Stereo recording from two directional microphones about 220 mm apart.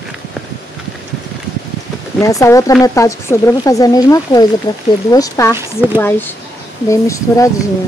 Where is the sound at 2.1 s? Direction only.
15° left (ahead or behind).